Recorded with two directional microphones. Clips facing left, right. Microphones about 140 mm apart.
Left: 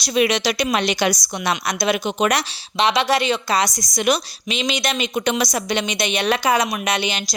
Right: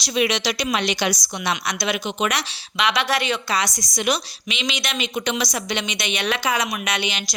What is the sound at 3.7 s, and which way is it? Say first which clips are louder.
A woman's voice: left 3 dB; 45° left (ahead or behind).